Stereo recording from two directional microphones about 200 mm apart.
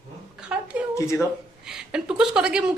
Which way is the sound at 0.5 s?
5° right (ahead or behind).